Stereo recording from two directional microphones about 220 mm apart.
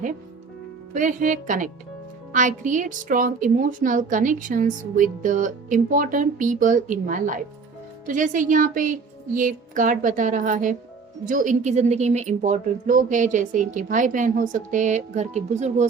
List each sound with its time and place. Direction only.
0.9 s a woman's voice: 35° right (ahead or behind)